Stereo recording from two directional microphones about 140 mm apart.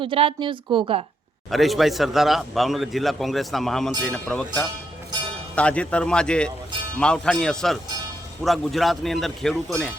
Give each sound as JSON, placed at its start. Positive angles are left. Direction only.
{"t": 0.0, "sound": "a woman's voice", "side_deg": -40}
{"t": 1.5, "sound": "a man's voice", "side_deg": 0}